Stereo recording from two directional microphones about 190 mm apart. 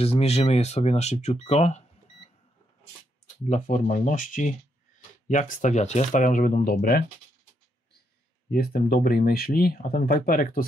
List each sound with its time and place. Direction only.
0.0 s speech: 30° left (ahead or behind)
3.4 s speech: 40° left (ahead or behind)
8.5 s speech: 50° left (ahead or behind)